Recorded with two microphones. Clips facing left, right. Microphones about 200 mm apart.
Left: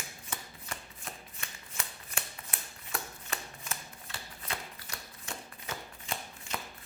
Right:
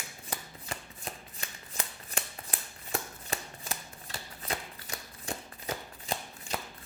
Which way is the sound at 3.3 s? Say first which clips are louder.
Right 6 dB; 35° right (ahead or behind).